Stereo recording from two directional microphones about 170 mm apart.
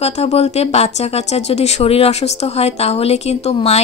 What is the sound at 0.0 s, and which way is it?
Speech, 40° left (ahead or behind).